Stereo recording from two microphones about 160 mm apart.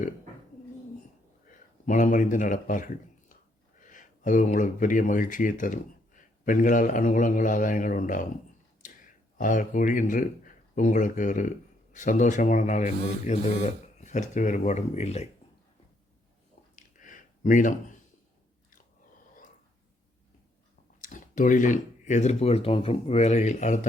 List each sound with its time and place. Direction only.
1.5 s speech: 55° left (ahead or behind)
9.4 s speech: 55° left (ahead or behind)
16.7 s a sound: 55° left (ahead or behind)
18.7 s chewing: 60° left (ahead or behind)
21.0 s speech: 55° left (ahead or behind)